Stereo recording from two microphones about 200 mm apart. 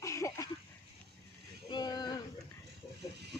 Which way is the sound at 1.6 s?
20° left (ahead or behind).